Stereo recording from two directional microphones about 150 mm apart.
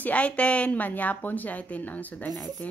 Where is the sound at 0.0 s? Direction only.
10° left (ahead or behind).